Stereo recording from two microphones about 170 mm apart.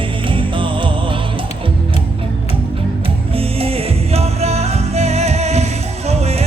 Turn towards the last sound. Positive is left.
turn(degrees=-40)  # may be behind; listen again after turning